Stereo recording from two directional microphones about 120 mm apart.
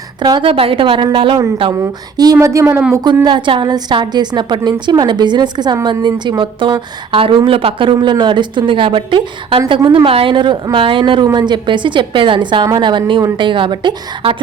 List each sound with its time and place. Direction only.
0.2 s a woman's voice: 40° right (ahead or behind)
0.5 s a woman's voice: 50° right (ahead or behind)
1.8 s speech: 30° right (ahead or behind)
3.2 s a woman's voice: 40° right (ahead or behind)